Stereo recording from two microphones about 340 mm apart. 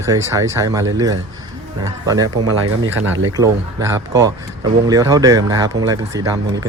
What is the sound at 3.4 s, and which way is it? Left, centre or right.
Speech, centre.